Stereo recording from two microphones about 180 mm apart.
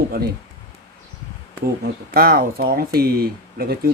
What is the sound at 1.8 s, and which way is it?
Speech, 55° right (ahead or behind).